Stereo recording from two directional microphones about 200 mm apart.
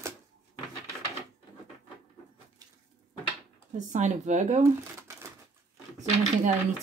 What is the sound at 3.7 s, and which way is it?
Speech, 35° right (ahead or behind).